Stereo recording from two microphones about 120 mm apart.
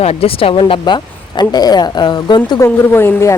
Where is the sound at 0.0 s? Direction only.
55° left (ahead or behind); by 2.6 s 35° left (ahead or behind).